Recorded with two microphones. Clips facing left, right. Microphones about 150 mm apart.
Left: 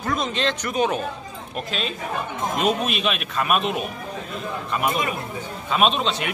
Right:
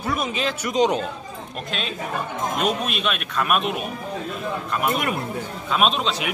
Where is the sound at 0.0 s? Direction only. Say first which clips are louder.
Left 1 dB; 10° right (ahead or behind).